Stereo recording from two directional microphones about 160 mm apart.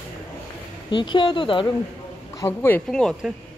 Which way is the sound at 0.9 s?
30° left (ahead or behind).